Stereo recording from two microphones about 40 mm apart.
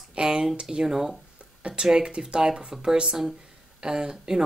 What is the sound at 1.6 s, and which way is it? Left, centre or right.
Speech, right.